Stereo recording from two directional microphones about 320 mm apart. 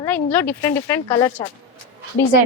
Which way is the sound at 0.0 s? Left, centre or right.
Centre.